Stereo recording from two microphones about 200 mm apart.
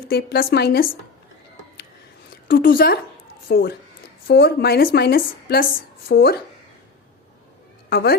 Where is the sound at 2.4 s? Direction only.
45° left (ahead or behind).